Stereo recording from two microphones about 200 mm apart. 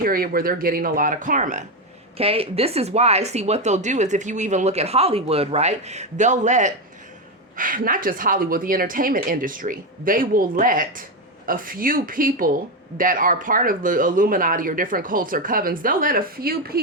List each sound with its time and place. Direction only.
0.0 s speech: 45° right (ahead or behind)